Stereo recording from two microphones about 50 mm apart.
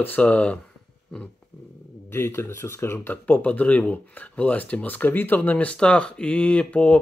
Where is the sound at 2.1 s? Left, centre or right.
Left.